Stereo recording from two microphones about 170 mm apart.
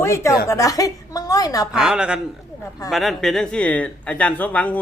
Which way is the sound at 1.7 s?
5° right (ahead or behind).